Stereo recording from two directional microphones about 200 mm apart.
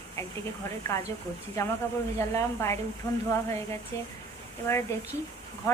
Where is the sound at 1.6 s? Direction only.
15° left (ahead or behind).